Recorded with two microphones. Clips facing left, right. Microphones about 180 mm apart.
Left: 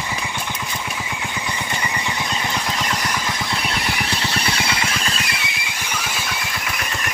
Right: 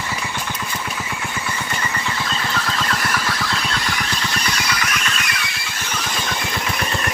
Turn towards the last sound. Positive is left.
turn(degrees=-35)  # may be behind; listen again after turning